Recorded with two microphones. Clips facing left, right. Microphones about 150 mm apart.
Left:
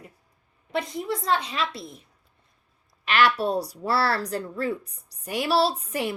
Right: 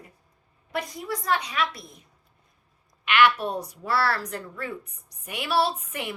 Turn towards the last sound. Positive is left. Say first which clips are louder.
# left 4 dB
turn(degrees=35)  # may be behind; listen again after turning